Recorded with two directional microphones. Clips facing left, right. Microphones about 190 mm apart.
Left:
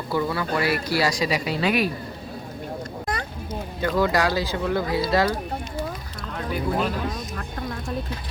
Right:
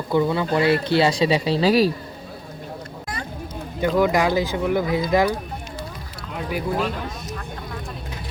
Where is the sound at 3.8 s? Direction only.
15° right (ahead or behind).